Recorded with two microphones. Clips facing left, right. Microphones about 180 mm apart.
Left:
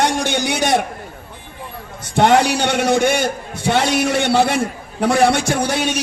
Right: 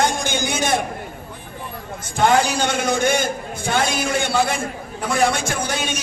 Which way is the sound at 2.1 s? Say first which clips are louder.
Left 4 dB; 70° left (ahead or behind).